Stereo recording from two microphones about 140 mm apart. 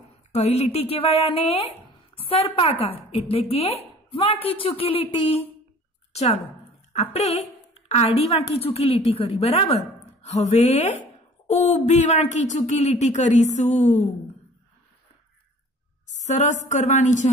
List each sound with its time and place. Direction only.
0.3 s a woman's voice: 50° left (ahead or behind)
16.2 s speech: 55° left (ahead or behind)